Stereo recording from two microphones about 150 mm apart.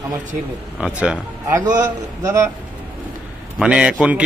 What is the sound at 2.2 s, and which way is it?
Speech, 20° right (ahead or behind).